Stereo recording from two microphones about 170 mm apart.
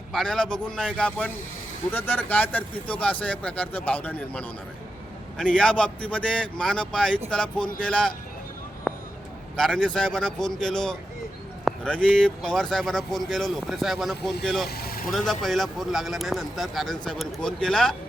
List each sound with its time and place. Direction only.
0.1 s speech: 5° left (ahead or behind)
8.9 s a sound: 5° right (ahead or behind)
9.6 s speech: 5° left (ahead or behind)
14.7 s vehicle: 65° left (ahead or behind)
15.1 s speech: centre (ahead or behind)